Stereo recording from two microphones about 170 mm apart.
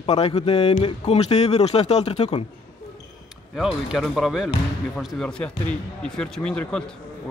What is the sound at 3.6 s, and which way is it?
Speech, centre (ahead or behind).